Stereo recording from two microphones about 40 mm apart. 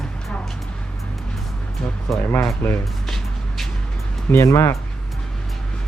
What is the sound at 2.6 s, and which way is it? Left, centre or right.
Speech, left.